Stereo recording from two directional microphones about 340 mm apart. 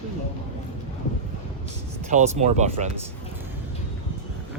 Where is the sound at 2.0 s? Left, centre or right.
Right.